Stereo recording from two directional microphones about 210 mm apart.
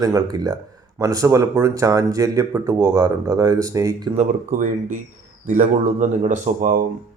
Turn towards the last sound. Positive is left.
turn(degrees=-40)  # may be behind; listen again after turning